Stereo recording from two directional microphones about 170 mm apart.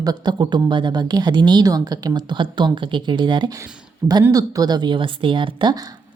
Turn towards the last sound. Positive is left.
turn(degrees=-25)  # may be behind; listen again after turning